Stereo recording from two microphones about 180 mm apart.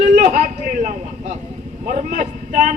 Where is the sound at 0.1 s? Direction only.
40° right (ahead or behind).